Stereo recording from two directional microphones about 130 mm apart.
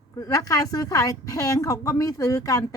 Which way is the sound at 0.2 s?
30° left (ahead or behind).